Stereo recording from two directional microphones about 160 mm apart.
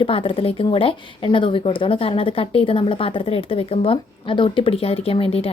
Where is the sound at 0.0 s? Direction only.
35° left (ahead or behind).